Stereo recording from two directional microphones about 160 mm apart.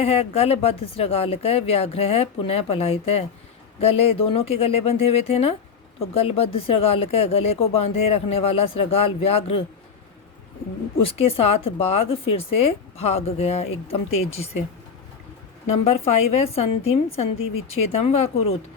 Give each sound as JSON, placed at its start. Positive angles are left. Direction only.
{"t": 0.0, "sound": "speech", "side_deg": 40}
{"t": 10.9, "sound": "speech", "side_deg": 35}
{"t": 15.7, "sound": "speech", "side_deg": 40}